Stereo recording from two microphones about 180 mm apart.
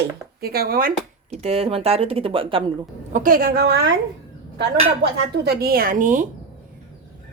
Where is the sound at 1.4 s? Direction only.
35° right (ahead or behind).